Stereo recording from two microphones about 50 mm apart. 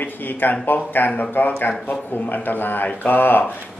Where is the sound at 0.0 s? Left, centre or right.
Left.